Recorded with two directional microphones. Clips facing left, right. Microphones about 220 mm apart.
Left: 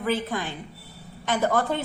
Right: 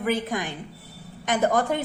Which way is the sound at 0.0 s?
15° right (ahead or behind).